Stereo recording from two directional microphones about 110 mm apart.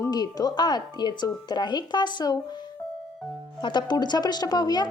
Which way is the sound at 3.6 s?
40° left (ahead or behind).